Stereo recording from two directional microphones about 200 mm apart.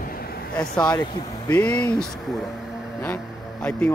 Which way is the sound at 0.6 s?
5° left (ahead or behind).